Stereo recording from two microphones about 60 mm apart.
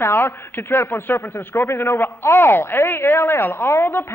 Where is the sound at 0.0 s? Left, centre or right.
Left.